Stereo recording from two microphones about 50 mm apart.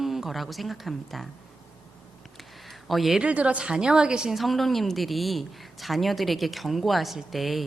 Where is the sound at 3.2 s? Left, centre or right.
Right.